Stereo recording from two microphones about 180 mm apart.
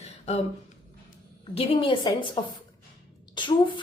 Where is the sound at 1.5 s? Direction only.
30° left (ahead or behind).